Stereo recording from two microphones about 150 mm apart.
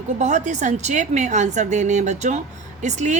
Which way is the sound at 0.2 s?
50° right (ahead or behind).